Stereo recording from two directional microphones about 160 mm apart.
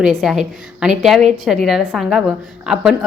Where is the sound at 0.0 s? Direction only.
Centre (ahead or behind).